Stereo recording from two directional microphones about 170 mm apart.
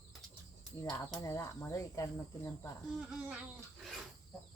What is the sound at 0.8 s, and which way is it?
Speech, 20° left (ahead or behind).